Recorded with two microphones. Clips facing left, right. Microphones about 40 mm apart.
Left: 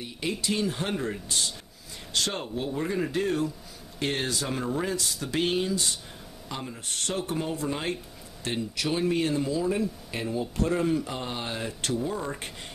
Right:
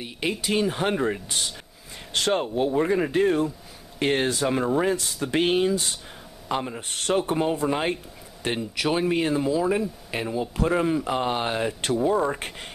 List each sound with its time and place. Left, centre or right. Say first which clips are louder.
0.0 s speech: right 3 dB; right
9.7 s speech: right 3 dB; right
10.7 s speech: right 3 dB; centre
11.1 s speech: right 8 dB; right